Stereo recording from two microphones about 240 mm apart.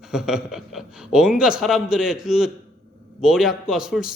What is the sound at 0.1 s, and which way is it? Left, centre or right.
A man's voice, centre.